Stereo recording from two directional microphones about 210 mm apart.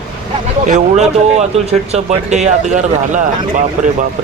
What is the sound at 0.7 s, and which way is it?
Speech, 35° right (ahead or behind).